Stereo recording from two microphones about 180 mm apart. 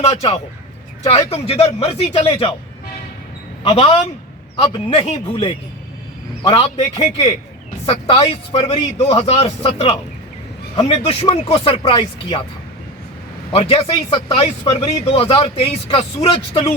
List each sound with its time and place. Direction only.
0.0 s speech: 35° left (ahead or behind)
3.6 s a man's voice: 30° left (ahead or behind)
13.5 s speech: 35° left (ahead or behind)